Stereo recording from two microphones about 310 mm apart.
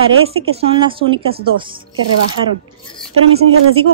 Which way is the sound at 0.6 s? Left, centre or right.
Centre.